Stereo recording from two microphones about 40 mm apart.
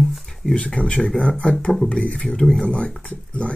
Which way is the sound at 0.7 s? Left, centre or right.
Left.